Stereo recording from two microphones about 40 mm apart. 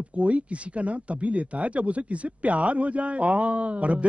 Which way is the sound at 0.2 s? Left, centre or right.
Right.